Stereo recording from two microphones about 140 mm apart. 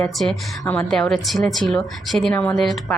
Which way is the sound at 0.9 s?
5° left (ahead or behind).